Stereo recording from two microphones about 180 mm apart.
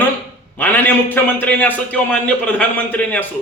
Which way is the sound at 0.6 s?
10° left (ahead or behind).